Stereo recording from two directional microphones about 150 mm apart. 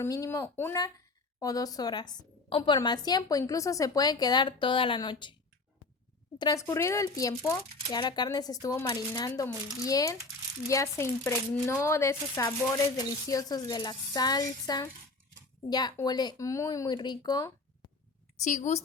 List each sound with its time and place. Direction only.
0.0 s a woman's voice: 20° left (ahead or behind)
6.4 s a woman's voice: 20° left (ahead or behind)
18.4 s a woman's voice: 50° left (ahead or behind)